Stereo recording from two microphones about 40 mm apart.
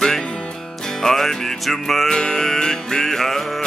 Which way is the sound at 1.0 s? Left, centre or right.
Centre.